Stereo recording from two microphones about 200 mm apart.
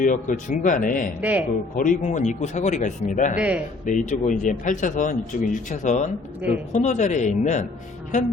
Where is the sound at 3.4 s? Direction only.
5° right (ahead or behind).